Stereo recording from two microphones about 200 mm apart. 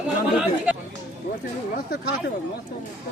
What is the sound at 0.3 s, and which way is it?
Speech, 5° right (ahead or behind).